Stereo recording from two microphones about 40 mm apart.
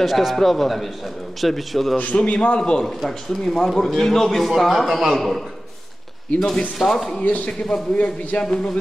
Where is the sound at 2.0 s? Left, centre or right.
Left.